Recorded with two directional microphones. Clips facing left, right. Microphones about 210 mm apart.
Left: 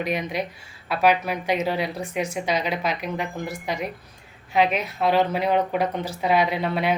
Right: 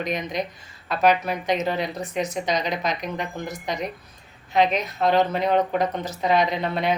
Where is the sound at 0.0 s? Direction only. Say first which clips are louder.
Left 1 dB; 10° left (ahead or behind).